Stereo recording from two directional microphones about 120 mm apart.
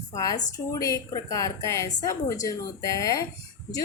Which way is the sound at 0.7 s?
30° left (ahead or behind).